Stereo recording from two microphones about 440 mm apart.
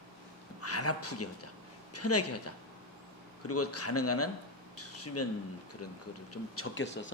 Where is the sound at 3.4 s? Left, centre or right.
Left.